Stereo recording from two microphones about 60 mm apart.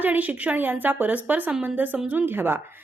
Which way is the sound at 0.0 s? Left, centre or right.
Right.